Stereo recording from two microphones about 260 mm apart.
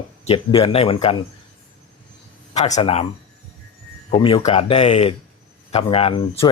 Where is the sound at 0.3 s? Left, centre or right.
Left.